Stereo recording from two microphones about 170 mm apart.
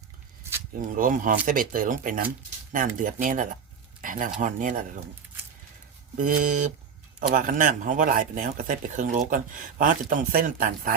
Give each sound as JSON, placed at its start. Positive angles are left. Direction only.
{"t": 0.9, "sound": "speech", "side_deg": -50}
{"t": 6.1, "sound": "speech", "side_deg": -50}